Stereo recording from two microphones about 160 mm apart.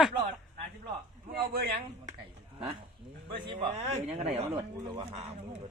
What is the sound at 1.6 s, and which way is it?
Speech, 80° right.